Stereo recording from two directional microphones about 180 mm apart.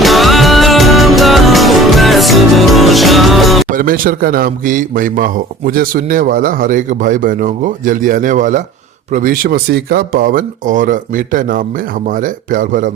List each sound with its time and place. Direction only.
0.0 s music: centre (ahead or behind)
3.7 s a man's voice: 50° right (ahead or behind)